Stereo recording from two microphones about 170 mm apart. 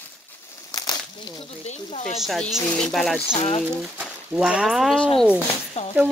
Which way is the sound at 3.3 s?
35° left (ahead or behind).